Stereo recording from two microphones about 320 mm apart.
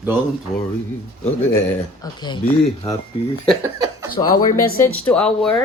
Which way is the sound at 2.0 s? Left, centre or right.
Centre.